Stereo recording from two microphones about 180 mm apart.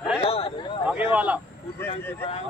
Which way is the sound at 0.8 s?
5° right (ahead or behind).